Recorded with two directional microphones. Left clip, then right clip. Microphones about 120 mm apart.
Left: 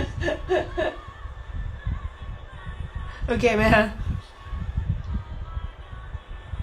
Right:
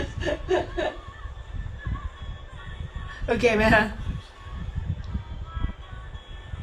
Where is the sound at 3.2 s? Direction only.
15° left (ahead or behind).